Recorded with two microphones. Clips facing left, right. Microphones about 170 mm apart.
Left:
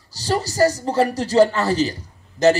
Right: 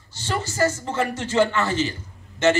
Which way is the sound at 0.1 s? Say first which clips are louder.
Left 5 dB; 35° left (ahead or behind).